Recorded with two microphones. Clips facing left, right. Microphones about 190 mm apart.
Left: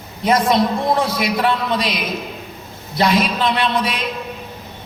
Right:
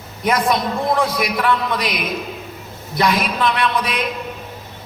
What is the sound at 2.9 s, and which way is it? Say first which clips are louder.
A man's voice: left 2 dB; 30° left (ahead or behind).